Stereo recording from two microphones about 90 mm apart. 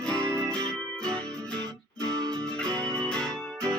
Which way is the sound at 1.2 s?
40° right (ahead or behind).